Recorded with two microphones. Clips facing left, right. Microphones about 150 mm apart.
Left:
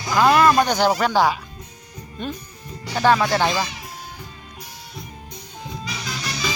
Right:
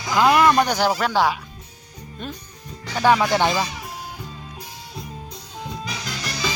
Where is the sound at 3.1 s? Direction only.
15° right (ahead or behind).